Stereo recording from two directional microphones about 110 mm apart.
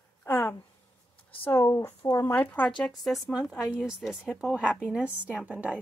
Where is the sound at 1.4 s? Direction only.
20° left (ahead or behind).